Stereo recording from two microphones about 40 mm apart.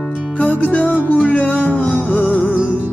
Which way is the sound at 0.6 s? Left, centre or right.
Left.